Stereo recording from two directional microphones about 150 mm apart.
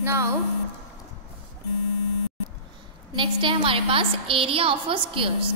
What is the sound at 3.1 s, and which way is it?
A woman's voice, 35° right (ahead or behind).